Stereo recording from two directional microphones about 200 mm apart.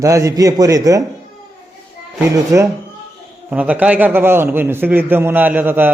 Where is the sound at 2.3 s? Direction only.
15° right (ahead or behind).